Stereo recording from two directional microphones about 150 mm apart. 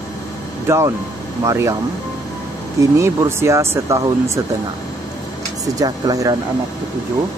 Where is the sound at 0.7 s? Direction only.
20° right (ahead or behind).